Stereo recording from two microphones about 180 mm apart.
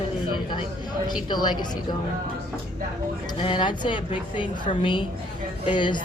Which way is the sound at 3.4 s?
25° left (ahead or behind).